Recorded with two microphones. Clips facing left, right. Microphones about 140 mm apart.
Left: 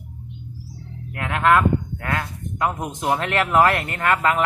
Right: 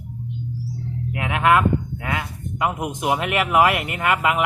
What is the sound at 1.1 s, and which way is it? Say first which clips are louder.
Speech: even; 10° right (ahead or behind).